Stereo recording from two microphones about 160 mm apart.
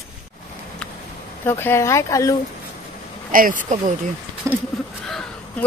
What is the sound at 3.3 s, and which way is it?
Speech, 55° right (ahead or behind).